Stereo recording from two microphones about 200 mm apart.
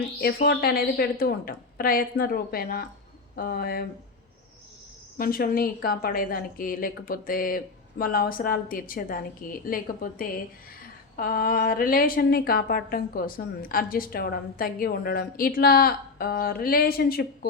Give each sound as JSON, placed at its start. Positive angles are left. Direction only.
{"t": 0.2, "sound": "a woman's voice", "side_deg": 50}
{"t": 5.1, "sound": "a woman's voice", "side_deg": 45}